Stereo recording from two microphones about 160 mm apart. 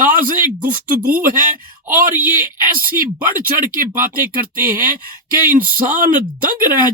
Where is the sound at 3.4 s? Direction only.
60° right (ahead or behind).